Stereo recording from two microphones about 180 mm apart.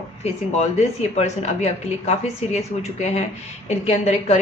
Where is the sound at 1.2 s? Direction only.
35° left (ahead or behind).